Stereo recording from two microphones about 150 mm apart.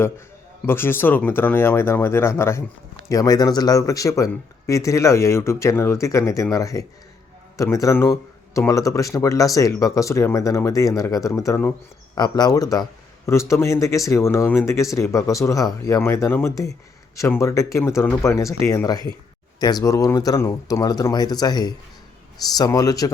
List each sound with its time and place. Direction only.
0.6 s speech: 15° left (ahead or behind)